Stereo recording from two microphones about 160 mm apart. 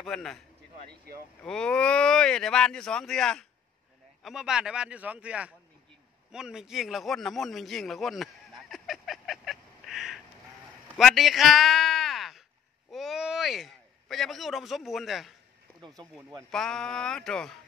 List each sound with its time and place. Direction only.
0.0 s speech: 5° left (ahead or behind)
0.8 s speech: 70° right (ahead or behind)
1.4 s speech: 5° left (ahead or behind)
6.3 s a sound: 5° right (ahead or behind)
12.9 s a man's voice: centre (ahead or behind)
16.4 s speech: 5° left (ahead or behind)